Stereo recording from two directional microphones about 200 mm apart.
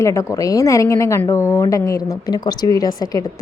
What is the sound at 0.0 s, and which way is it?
A woman's voice, 15° left (ahead or behind).